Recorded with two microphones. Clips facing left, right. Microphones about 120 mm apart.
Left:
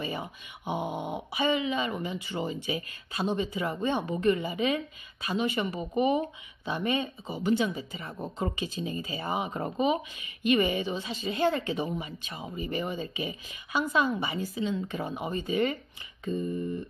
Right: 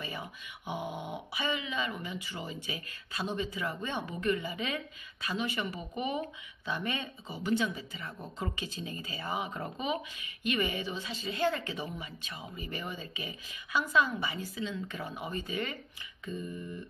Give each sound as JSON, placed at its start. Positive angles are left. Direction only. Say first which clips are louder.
{"t": 0.0, "sound": "speech", "louder": "left 6 dB", "side_deg": 25}